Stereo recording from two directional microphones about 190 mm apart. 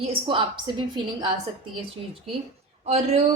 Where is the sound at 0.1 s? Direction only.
25° right (ahead or behind).